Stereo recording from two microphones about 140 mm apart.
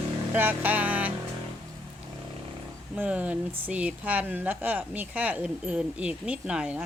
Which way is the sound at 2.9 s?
10° right (ahead or behind).